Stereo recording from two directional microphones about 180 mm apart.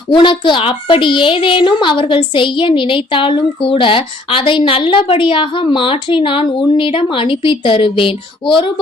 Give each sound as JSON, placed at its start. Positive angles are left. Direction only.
{"t": 0.1, "sound": "a woman's voice", "side_deg": 25}